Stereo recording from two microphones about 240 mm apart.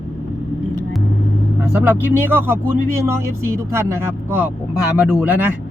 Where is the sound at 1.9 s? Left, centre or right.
Centre.